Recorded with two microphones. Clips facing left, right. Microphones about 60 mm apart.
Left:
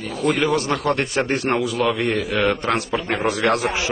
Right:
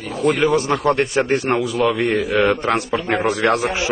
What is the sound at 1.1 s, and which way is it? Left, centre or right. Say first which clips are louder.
A man's voice: right 3 dB; centre.